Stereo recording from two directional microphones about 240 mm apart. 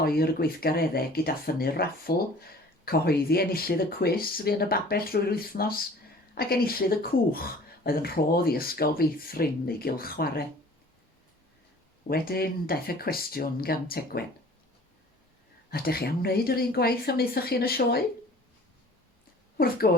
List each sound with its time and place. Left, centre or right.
0.0 s speech: left
12.0 s speech: left
15.7 s speech: left
19.5 s speech: left